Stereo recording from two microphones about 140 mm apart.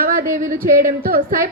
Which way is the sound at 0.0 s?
85° right.